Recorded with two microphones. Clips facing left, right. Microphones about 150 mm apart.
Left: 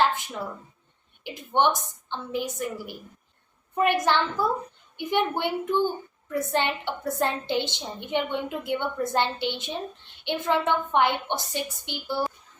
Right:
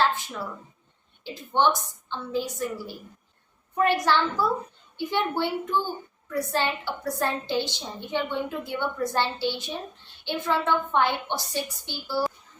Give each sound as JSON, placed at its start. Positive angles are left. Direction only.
{"t": 0.0, "sound": "a woman's voice", "side_deg": 20}